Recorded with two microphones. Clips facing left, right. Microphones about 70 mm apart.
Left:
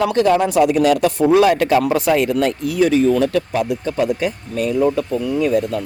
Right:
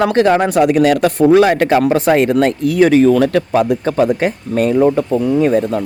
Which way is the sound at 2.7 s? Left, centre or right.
Right.